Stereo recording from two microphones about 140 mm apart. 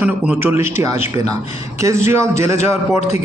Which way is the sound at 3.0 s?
50° left (ahead or behind).